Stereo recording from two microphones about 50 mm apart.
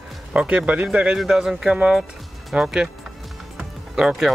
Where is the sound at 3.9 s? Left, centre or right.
Centre.